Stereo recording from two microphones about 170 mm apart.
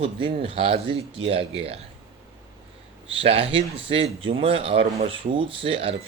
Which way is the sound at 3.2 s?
35° right (ahead or behind).